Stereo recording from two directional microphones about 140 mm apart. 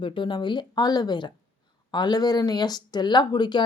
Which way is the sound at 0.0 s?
35° left (ahead or behind).